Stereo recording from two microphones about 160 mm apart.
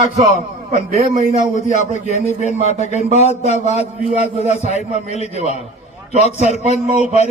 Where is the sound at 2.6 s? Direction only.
45° left (ahead or behind).